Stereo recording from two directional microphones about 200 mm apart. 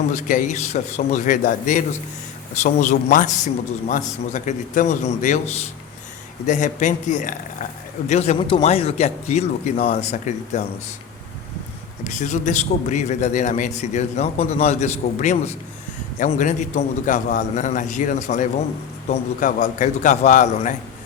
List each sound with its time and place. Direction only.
0.1 s a man's voice: 40° left (ahead or behind)
6.4 s a man's voice: 40° left (ahead or behind)
12.0 s a man's voice: 40° left (ahead or behind)